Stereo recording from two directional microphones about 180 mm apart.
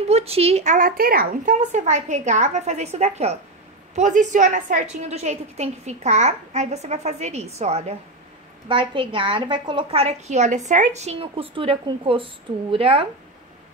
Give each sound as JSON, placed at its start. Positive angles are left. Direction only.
{"t": 0.1, "sound": "a woman's voice", "side_deg": -35}